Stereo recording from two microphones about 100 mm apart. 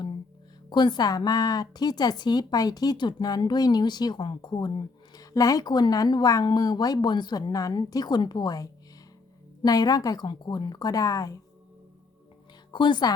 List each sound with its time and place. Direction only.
0.7 s a woman's voice: 50° left (ahead or behind)
12.7 s a woman's voice: 50° left (ahead or behind)